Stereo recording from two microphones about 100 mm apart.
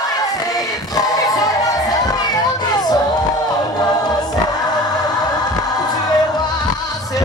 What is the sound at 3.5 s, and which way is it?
Choir, 40° left (ahead or behind).